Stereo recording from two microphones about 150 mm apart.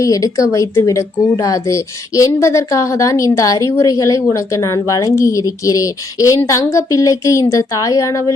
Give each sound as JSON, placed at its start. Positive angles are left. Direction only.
{"t": 0.0, "sound": "a woman's voice", "side_deg": 20}